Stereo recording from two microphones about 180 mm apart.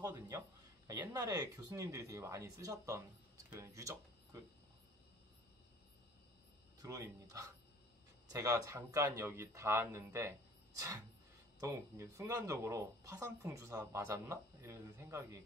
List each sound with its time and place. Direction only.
0.0 s a man's voice: 20° right (ahead or behind)
6.8 s speech: 20° right (ahead or behind)
11.6 s speech: 15° right (ahead or behind)